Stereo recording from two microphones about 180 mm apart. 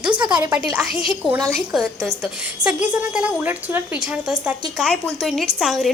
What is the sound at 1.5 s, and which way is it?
A woman's voice, centre (ahead or behind).